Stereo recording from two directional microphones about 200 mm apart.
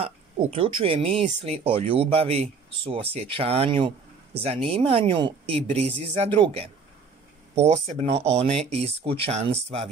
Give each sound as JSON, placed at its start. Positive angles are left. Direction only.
{"t": 0.0, "sound": "speech", "side_deg": -30}